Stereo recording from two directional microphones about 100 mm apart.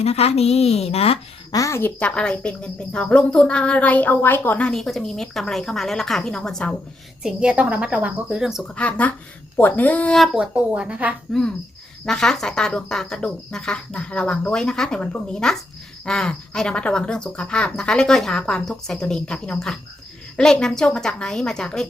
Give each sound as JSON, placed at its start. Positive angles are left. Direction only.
{"t": 0.0, "sound": "a woman's voice", "side_deg": 90}
{"t": 1.5, "sound": "a woman's voice", "side_deg": 30}
{"t": 1.8, "sound": "speech", "side_deg": 15}
{"t": 4.7, "sound": "a woman's voice", "side_deg": 5}
{"t": 7.2, "sound": "a woman's voice", "side_deg": -5}
{"t": 8.6, "sound": "speech", "side_deg": 10}
{"t": 10.3, "sound": "a woman's voice", "side_deg": -10}
{"t": 11.3, "sound": "a woman's voice", "side_deg": 0}